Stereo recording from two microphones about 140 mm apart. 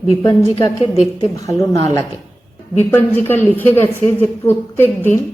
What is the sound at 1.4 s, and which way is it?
Speech, 25° left (ahead or behind).